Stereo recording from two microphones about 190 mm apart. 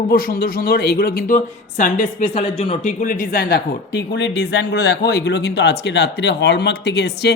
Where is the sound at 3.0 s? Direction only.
45° left (ahead or behind).